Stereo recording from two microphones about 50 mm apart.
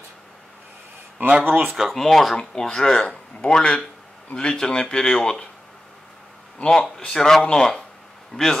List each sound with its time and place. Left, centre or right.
1.4 s speech: right
1.7 s speech: centre
6.6 s speech: centre